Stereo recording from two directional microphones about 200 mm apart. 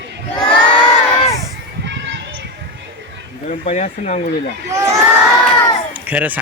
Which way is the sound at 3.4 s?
35° left (ahead or behind).